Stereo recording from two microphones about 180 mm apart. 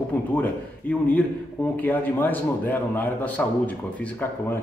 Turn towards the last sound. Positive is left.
turn(degrees=10)  # may be behind; listen again after turning